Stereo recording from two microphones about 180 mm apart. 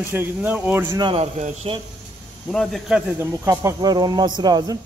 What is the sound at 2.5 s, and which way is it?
Speech, centre (ahead or behind).